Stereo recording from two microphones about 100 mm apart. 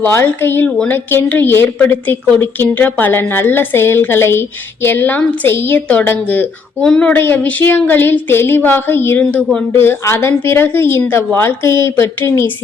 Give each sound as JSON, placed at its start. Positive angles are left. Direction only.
{"t": 0.0, "sound": "a woman's voice", "side_deg": 25}